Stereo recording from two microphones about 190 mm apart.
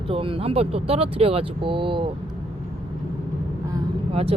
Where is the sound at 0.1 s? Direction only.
30° right (ahead or behind).